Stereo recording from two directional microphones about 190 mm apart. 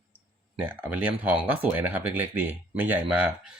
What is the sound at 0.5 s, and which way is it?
Speech, 10° right (ahead or behind).